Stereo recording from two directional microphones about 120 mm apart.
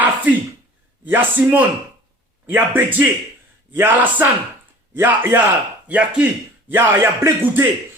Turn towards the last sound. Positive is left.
turn(degrees=-20)  # may be behind; listen again after turning